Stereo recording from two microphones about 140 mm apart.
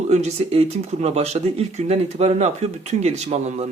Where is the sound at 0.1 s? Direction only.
50° right (ahead or behind).